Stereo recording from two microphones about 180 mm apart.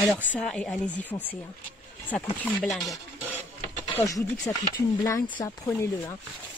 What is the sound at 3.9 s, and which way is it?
Speech, 20° left (ahead or behind).